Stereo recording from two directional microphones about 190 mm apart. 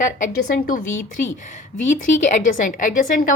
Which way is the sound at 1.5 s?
40° left (ahead or behind).